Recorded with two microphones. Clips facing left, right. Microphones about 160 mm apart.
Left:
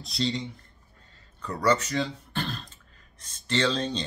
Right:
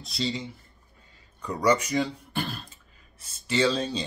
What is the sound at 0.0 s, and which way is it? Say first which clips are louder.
Speech: left 1 dB; centre (ahead or behind).